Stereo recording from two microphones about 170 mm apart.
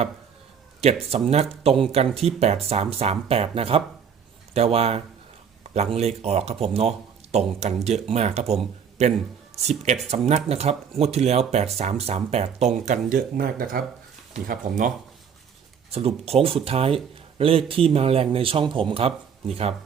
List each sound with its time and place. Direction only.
0.8 s speech: 35° right (ahead or behind)
15.9 s speech: 35° right (ahead or behind)